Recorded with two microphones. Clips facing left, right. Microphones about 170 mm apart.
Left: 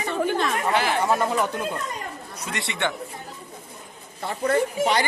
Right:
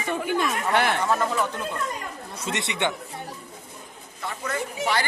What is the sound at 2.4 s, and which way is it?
Speech, 20° right (ahead or behind).